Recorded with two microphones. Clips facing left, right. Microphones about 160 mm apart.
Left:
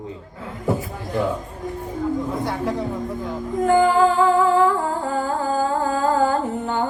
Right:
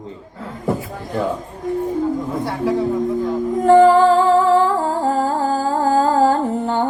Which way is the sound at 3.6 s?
35° right (ahead or behind).